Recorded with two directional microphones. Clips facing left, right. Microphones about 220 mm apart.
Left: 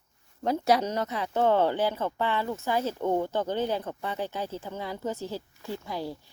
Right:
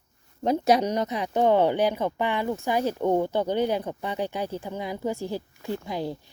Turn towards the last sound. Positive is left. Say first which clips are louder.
# right 4 dB
turn(degrees=-15)  # may be behind; listen again after turning